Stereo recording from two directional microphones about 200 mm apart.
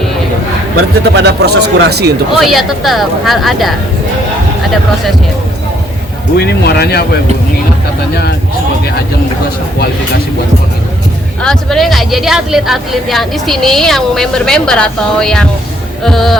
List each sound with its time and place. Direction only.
1.1 s speech: 55° right (ahead or behind)
2.4 s speech: centre (ahead or behind)
6.3 s speech: 50° left (ahead or behind)
11.4 s speech: centre (ahead or behind)